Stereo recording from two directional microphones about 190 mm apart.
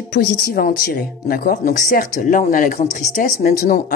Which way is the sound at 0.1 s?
50° left (ahead or behind).